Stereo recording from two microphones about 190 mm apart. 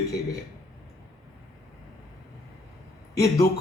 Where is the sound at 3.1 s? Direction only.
15° left (ahead or behind).